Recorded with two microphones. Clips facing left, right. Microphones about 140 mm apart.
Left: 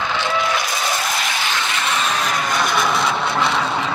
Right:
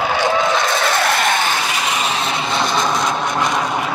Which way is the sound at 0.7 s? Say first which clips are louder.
Right 6 dB; 65° right (ahead or behind).